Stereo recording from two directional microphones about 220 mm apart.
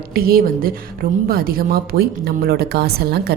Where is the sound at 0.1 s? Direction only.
40° right (ahead or behind).